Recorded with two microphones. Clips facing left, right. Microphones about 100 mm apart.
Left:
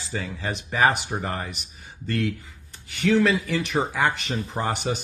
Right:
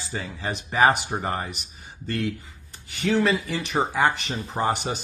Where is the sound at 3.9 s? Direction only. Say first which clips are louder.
Right 1 dB; 10° right (ahead or behind).